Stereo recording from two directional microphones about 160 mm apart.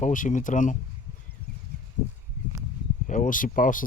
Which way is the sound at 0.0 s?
55° left (ahead or behind).